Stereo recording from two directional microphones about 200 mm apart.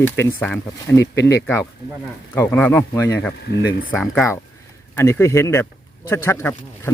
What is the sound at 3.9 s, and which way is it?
Speech, centre (ahead or behind).